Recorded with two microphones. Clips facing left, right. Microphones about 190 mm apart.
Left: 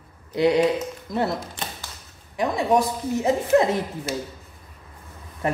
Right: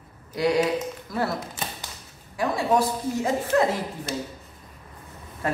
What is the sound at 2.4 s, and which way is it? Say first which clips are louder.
Speech: left 2 dB; 20° left (ahead or behind).